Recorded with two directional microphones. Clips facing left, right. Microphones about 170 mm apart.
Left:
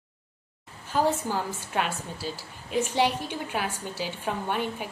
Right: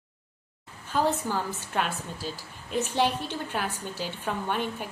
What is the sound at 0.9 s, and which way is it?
A woman's voice, 10° left (ahead or behind).